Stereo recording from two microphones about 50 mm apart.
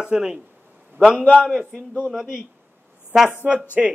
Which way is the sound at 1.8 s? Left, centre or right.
Centre.